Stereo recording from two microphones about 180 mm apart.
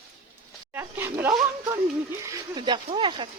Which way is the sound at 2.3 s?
25° right (ahead or behind).